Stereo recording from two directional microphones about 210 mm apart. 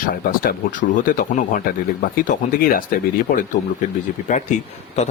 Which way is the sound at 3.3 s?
40° left (ahead or behind).